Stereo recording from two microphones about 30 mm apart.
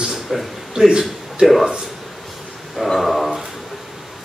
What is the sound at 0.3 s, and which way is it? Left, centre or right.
Speech, centre.